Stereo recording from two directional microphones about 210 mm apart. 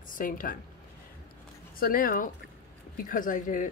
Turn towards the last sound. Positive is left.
turn(degrees=40)  # may be behind; listen again after turning